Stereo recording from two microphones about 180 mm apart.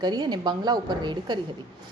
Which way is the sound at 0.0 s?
25° right (ahead or behind).